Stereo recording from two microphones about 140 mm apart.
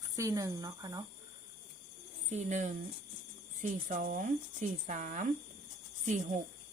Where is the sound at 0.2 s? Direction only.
25° right (ahead or behind).